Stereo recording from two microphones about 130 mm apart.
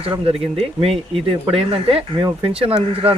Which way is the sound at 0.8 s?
45° right (ahead or behind).